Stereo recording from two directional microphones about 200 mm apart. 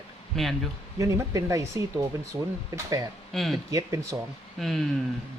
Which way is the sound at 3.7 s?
15° right (ahead or behind).